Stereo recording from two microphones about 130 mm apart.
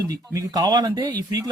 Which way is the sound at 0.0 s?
30° right (ahead or behind).